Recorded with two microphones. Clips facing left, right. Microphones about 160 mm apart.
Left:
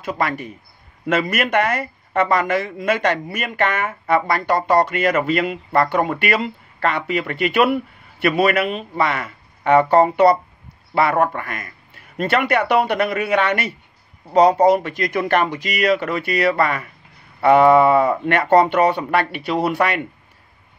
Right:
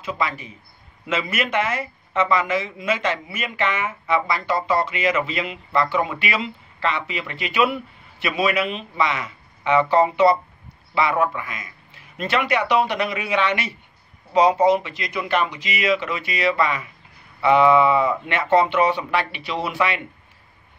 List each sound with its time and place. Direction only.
0.0 s speech: 55° left (ahead or behind)